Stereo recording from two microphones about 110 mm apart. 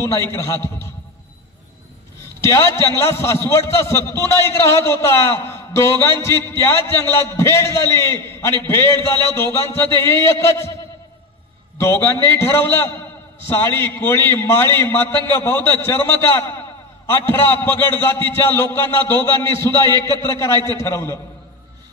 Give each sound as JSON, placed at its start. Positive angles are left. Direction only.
{"t": 0.0, "sound": "a man's voice", "side_deg": 25}
{"t": 2.4, "sound": "a man's voice", "side_deg": 25}
{"t": 11.8, "sound": "a man's voice", "side_deg": 25}